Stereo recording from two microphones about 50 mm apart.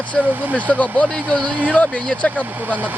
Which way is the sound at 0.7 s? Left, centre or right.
Left.